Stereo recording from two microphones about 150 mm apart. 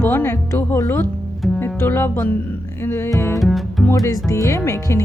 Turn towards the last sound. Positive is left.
turn(degrees=20)  # may be behind; listen again after turning